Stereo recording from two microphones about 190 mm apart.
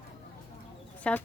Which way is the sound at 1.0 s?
5° left (ahead or behind).